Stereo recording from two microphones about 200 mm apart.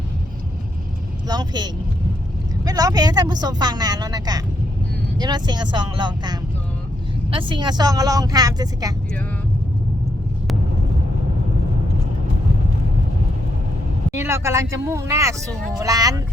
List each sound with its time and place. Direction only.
1.3 s speech: 20° right (ahead or behind)
14.1 s speech: 15° right (ahead or behind)